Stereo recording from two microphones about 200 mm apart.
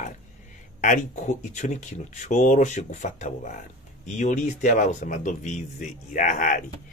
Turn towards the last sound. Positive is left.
turn(degrees=40)  # may be behind; listen again after turning